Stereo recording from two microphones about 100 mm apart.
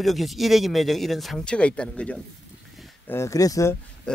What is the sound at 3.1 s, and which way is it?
Speech, 30° left (ahead or behind).